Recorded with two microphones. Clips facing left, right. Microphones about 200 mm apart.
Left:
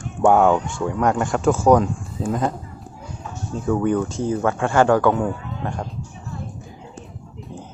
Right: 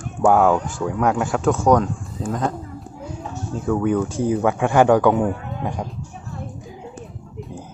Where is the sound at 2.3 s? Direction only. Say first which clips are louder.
Left 1 dB; 5° left (ahead or behind).